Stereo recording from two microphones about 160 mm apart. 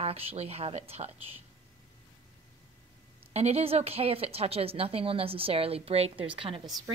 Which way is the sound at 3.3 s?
40° right (ahead or behind).